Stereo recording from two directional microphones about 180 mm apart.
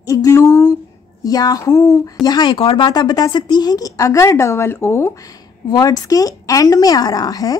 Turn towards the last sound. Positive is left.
turn(degrees=20)  # may be behind; listen again after turning